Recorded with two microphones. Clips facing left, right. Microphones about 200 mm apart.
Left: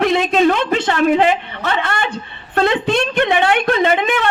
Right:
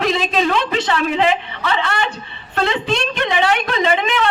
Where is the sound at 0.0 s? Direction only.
55° left (ahead or behind).